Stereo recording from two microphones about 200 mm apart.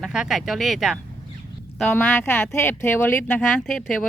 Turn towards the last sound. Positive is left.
turn(degrees=0)  # may be behind; listen again after turning